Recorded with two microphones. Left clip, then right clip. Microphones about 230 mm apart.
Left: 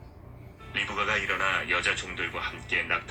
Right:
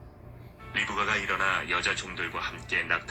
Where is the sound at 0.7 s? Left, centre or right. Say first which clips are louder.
Even; right.